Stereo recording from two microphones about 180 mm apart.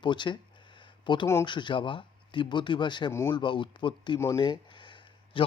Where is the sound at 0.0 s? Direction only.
25° left (ahead or behind).